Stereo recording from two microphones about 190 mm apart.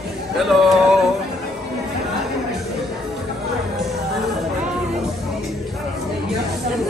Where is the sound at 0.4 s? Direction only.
Centre (ahead or behind).